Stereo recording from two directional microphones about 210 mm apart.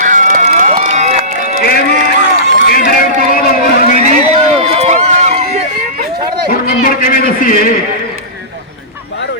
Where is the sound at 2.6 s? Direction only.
45° left (ahead or behind).